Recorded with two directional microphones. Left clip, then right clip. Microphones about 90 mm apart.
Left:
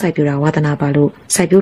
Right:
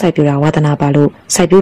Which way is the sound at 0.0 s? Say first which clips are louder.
Right 4 dB; 30° right (ahead or behind).